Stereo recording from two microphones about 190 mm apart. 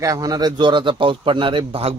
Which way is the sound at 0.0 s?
20° right (ahead or behind).